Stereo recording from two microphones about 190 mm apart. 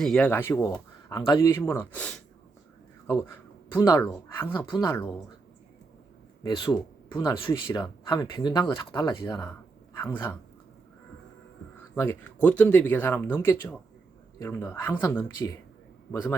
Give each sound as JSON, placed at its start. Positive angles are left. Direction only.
{"t": 0.0, "sound": "speech", "side_deg": 5}
{"t": 3.8, "sound": "speech", "side_deg": 20}
{"t": 6.7, "sound": "speech", "side_deg": 15}
{"t": 11.9, "sound": "speech", "side_deg": 10}